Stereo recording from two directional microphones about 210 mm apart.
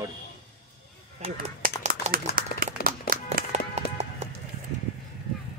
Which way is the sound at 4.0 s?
30° right (ahead or behind).